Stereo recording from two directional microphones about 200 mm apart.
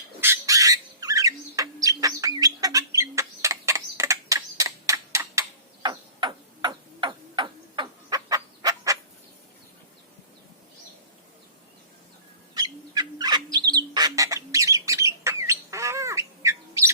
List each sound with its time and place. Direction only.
0.2 s squawk: 15° right (ahead or behind)
12.5 s bird: 20° right (ahead or behind)